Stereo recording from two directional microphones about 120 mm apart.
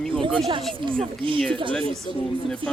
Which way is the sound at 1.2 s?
45° right (ahead or behind).